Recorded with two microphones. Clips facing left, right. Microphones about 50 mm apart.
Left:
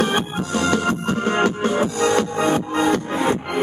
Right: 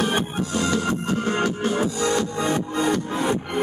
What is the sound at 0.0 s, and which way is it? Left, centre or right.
Music, left.